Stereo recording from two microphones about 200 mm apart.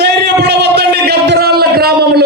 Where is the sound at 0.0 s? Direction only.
55° right (ahead or behind).